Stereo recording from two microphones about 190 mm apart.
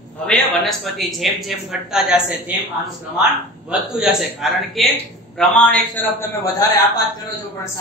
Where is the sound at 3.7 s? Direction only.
5° right (ahead or behind).